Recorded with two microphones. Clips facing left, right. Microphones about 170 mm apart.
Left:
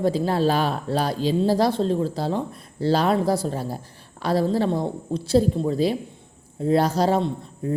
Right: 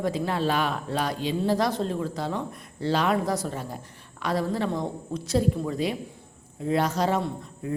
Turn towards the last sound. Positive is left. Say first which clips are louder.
# left 5 dB
turn(degrees=30)  # may be behind; listen again after turning